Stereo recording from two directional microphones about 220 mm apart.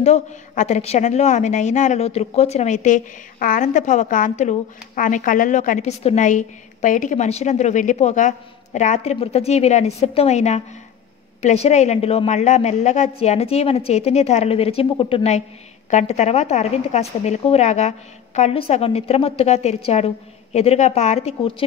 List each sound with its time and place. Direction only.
0.0 s a woman's voice: 30° left (ahead or behind)